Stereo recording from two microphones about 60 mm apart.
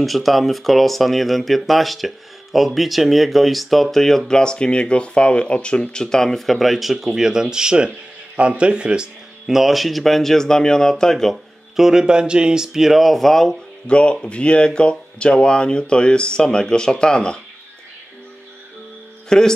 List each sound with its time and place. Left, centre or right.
0.0 s speech: centre
9.6 s speech: centre
11.7 s speech: centre
13.8 s speech: centre
19.2 s speech: centre